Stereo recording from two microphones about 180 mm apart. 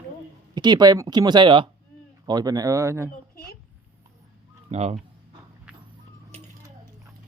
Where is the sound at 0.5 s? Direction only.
25° right (ahead or behind).